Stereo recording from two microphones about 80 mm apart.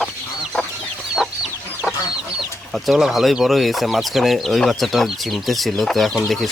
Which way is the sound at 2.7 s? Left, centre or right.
Centre.